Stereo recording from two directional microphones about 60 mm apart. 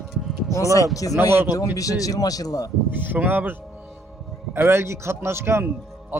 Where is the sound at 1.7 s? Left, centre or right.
Left.